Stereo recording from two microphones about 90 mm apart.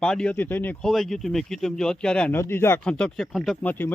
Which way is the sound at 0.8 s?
Centre (ahead or behind).